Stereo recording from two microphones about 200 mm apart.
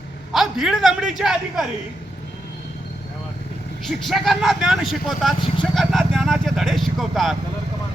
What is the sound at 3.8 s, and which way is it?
Speech, centre (ahead or behind).